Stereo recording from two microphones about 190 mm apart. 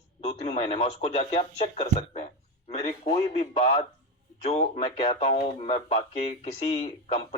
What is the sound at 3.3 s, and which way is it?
Speech, 35° left (ahead or behind).